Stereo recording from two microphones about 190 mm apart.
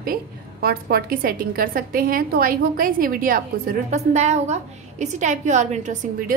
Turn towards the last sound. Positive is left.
turn(degrees=-45)  # may be behind; listen again after turning